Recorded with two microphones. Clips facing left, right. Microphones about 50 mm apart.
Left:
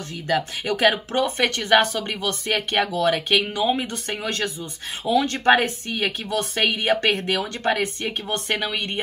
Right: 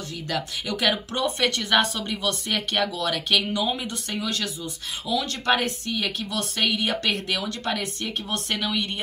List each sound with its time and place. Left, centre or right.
0.3 s speech: left